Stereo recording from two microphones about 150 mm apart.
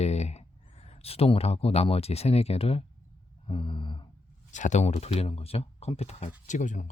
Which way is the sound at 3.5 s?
35° left (ahead or behind).